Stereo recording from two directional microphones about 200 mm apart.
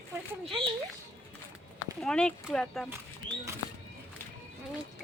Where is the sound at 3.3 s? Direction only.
25° right (ahead or behind).